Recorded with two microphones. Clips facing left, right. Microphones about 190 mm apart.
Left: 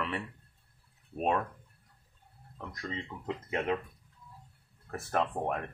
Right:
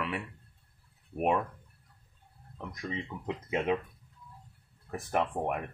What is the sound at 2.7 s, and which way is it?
Speech, 15° right (ahead or behind).